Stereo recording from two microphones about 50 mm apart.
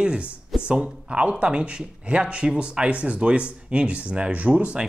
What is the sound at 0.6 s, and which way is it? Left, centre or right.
Speech, right.